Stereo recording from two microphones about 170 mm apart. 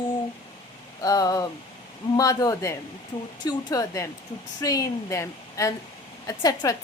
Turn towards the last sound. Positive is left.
turn(degrees=20)  # may be behind; listen again after turning